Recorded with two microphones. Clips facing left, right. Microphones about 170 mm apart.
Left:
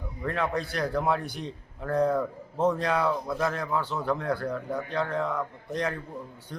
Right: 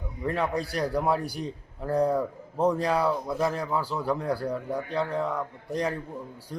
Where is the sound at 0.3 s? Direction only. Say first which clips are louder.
Right 1 dB; 10° right (ahead or behind).